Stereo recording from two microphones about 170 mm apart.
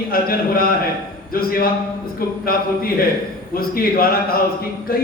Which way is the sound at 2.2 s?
60° left (ahead or behind).